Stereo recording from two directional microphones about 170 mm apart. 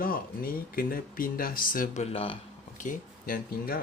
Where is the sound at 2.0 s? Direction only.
35° left (ahead or behind).